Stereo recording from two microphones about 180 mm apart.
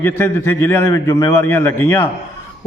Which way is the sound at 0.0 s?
15° left (ahead or behind).